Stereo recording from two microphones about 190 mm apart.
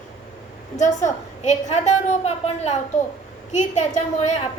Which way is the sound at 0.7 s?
40° left (ahead or behind).